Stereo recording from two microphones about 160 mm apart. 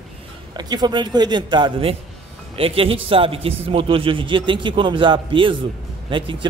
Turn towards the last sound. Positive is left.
turn(degrees=-30)  # may be behind; listen again after turning